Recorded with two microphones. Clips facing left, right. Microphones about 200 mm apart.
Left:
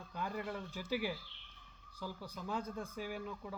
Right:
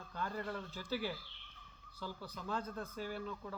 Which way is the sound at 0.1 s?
15° left (ahead or behind).